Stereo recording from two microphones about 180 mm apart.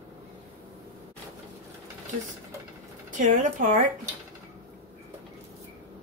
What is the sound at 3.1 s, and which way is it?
Speech, 45° right (ahead or behind).